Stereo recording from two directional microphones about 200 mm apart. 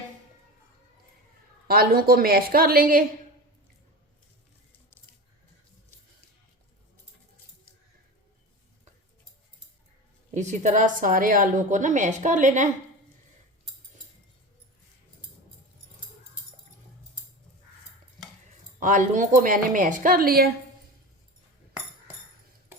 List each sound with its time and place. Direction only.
1.6 s a woman's voice: 45° right (ahead or behind)
10.3 s a woman's voice: 35° right (ahead or behind)
18.8 s a woman's voice: 40° right (ahead or behind)